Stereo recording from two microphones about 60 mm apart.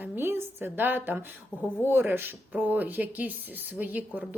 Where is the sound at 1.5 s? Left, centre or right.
Left.